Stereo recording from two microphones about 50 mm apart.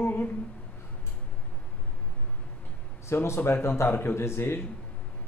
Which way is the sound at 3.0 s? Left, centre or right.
Left.